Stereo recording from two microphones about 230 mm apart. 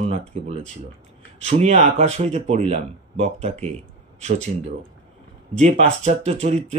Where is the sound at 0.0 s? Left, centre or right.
Right.